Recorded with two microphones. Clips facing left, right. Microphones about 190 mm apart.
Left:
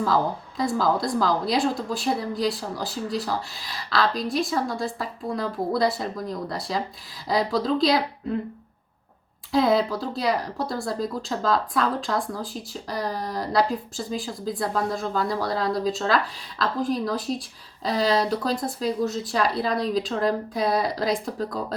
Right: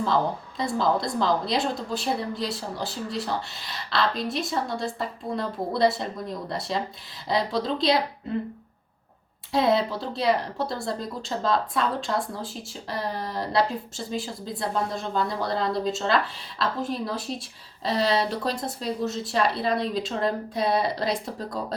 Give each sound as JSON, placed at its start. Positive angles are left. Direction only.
{"t": 0.1, "sound": "speech", "side_deg": 0}
{"t": 9.5, "sound": "speech", "side_deg": 0}